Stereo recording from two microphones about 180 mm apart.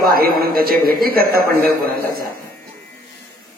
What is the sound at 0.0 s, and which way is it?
A man's voice, 55° right (ahead or behind).